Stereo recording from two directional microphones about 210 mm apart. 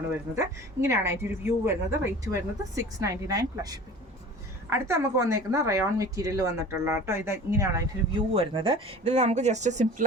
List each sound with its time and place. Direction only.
0.1 s speech: 10° right (ahead or behind)
8.3 s speech: 25° right (ahead or behind)